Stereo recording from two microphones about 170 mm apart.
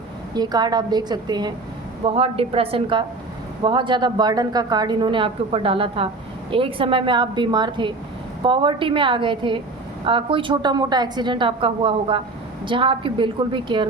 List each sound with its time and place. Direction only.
0.3 s a woman's voice: 25° right (ahead or behind)